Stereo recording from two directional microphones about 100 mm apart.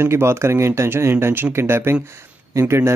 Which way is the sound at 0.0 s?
25° right (ahead or behind).